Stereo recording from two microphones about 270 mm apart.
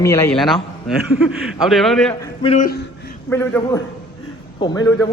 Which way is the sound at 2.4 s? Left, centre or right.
Left.